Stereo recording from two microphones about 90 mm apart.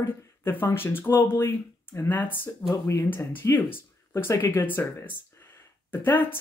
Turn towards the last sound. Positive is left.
turn(degrees=20)  # may be behind; listen again after turning